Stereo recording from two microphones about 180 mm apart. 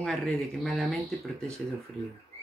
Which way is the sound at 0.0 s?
Centre (ahead or behind).